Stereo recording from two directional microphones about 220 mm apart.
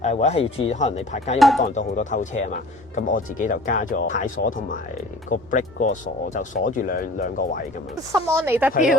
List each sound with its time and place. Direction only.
0.0 s speech: 30° left (ahead or behind)
1.4 s speech: centre (ahead or behind)
1.6 s speech: 35° left (ahead or behind)
8.1 s speech: 10° right (ahead or behind)